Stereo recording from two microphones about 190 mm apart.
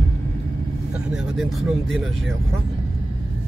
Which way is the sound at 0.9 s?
Centre (ahead or behind).